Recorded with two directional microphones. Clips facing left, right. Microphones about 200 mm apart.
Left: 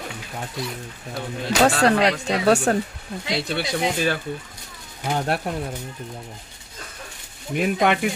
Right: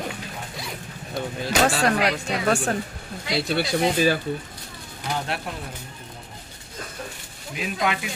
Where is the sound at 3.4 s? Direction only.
Centre (ahead or behind).